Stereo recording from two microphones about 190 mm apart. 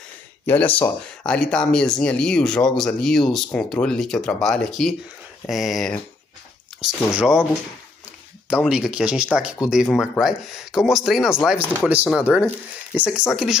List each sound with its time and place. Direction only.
0.5 s speech: 10° left (ahead or behind)
8.6 s speech: 5° right (ahead or behind)